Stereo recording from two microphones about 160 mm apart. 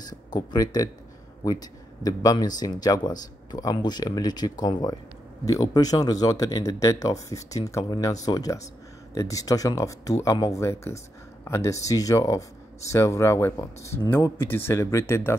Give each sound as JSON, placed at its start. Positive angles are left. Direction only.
{"t": 0.1, "sound": "a man's voice", "side_deg": 25}